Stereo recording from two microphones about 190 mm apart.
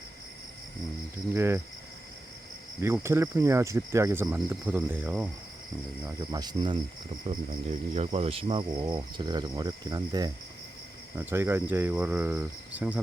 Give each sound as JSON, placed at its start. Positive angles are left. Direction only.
{"t": 1.3, "sound": "speech", "side_deg": -15}
{"t": 2.8, "sound": "speech", "side_deg": -15}
{"t": 6.1, "sound": "speech", "side_deg": -20}